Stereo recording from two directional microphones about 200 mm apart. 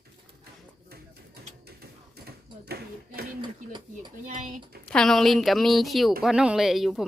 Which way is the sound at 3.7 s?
20° right (ahead or behind).